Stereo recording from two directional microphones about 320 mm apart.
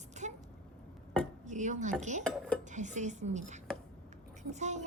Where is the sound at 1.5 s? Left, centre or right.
Right.